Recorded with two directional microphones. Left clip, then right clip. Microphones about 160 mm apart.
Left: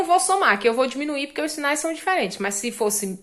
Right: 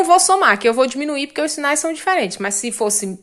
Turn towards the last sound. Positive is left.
turn(degrees=-20)  # may be behind; listen again after turning